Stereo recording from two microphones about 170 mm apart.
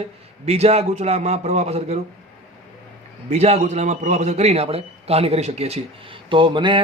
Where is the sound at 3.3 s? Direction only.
40° right (ahead or behind).